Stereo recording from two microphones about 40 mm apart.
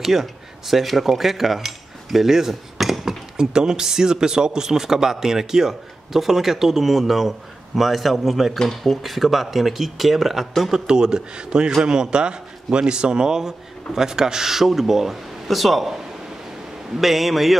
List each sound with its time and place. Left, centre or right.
0.0 s speech: centre
3.3 s a man's voice: centre
10.7 s a man's voice: centre